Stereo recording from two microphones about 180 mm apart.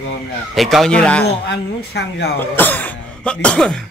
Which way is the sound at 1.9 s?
70° left (ahead or behind).